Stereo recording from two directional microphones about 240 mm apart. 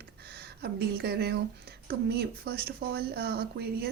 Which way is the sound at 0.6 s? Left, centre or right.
Right.